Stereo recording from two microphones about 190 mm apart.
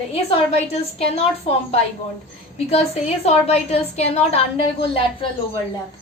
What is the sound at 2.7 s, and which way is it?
A woman's voice, 35° left (ahead or behind).